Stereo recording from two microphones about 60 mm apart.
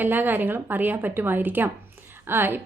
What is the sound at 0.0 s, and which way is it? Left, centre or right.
A woman's voice, right.